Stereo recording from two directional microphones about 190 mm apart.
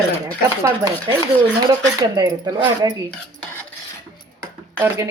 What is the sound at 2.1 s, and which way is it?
Speech, 20° right (ahead or behind).